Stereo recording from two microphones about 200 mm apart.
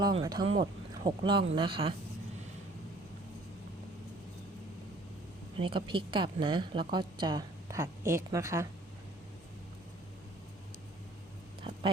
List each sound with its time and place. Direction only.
0.0 s a woman's voice: 20° right (ahead or behind)
5.5 s a woman's voice: 25° right (ahead or behind)
11.7 s a sound: 25° right (ahead or behind)